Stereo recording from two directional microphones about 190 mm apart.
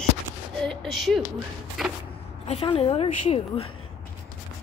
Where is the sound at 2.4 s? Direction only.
30° left (ahead or behind).